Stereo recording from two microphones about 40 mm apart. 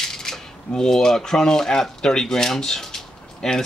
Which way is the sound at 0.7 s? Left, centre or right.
Centre.